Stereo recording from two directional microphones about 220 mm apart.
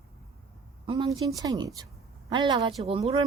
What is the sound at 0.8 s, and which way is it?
A woman's voice, 25° right (ahead or behind).